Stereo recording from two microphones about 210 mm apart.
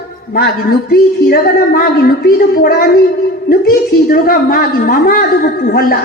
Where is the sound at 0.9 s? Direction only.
45° left (ahead or behind).